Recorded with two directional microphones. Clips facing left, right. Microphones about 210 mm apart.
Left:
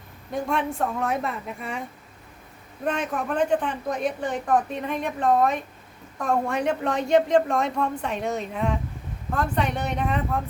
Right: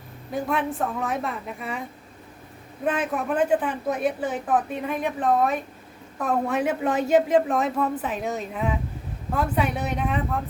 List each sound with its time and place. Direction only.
0.3 s a man's voice: 5° right (ahead or behind)
2.8 s a man's voice: 5° right (ahead or behind)